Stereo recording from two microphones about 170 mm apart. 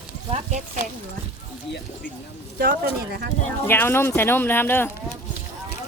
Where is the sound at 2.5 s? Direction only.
60° right (ahead or behind).